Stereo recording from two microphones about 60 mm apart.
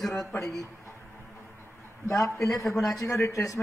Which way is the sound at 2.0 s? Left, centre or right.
Left.